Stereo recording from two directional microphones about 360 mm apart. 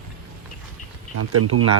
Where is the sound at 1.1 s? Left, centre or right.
Right.